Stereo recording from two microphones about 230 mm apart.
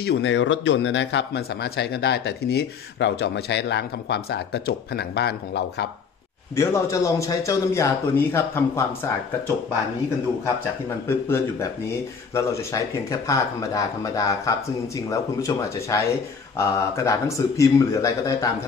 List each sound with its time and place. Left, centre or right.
0.0 s speech: left
6.5 s a man's voice: centre
11.1 s a man's voice: centre